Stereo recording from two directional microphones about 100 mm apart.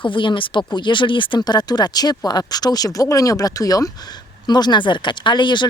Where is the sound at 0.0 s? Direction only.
55° left (ahead or behind).